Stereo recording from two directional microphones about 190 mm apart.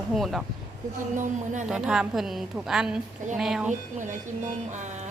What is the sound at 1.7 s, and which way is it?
A woman's voice, 5° right (ahead or behind).